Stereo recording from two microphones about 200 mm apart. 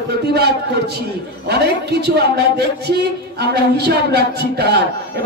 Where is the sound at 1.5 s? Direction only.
55° right (ahead or behind).